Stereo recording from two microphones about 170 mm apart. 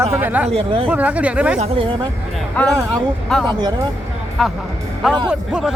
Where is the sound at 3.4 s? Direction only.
25° right (ahead or behind).